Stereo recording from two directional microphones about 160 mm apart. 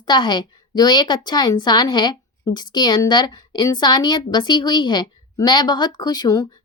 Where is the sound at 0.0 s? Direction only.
25° left (ahead or behind).